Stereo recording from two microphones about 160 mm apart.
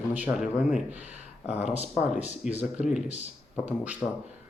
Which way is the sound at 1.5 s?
45° left (ahead or behind).